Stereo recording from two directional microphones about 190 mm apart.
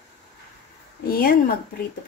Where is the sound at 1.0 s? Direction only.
50° left (ahead or behind).